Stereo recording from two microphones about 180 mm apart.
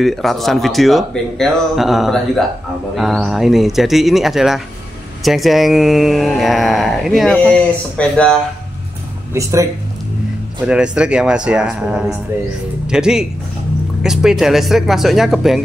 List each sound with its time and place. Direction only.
0.0 s speech: centre (ahead or behind)
9.3 s speech: 15° right (ahead or behind)
10.7 s speech: 5° right (ahead or behind)